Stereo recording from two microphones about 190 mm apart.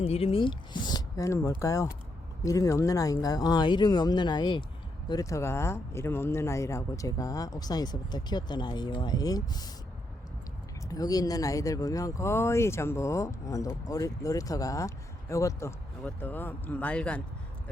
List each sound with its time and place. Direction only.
0.0 s speech: 30° left (ahead or behind)
10.8 s speech: 20° left (ahead or behind)